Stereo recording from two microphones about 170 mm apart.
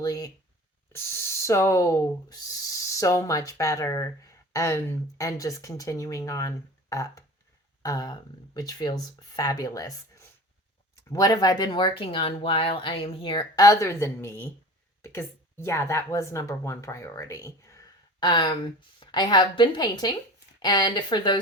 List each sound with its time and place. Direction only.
0.0 s a woman's voice: 20° left (ahead or behind)